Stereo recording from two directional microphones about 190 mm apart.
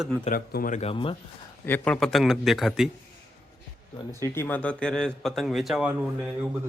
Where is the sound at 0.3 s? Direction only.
50° left (ahead or behind); by 1.1 s 30° left (ahead or behind).